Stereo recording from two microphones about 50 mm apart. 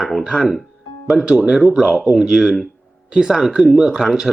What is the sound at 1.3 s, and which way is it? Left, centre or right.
Speech, centre.